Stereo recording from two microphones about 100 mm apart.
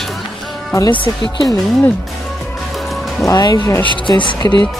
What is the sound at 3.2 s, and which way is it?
Speech, 40° left (ahead or behind).